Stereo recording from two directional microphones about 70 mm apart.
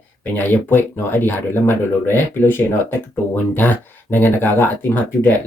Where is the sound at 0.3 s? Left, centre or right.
Left.